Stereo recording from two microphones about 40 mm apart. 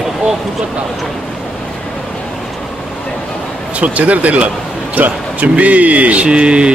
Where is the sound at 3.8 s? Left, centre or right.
Right.